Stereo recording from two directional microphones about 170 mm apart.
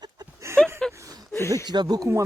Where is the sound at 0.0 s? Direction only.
20° right (ahead or behind).